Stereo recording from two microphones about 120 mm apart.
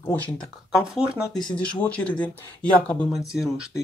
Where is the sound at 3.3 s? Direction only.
5° right (ahead or behind).